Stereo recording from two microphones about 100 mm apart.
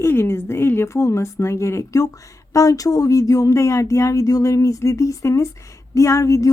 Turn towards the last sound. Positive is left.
turn(degrees=30)  # may be behind; listen again after turning